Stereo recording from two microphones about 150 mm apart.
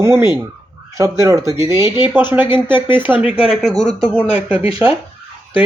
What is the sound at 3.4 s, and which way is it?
Speech, 5° left (ahead or behind).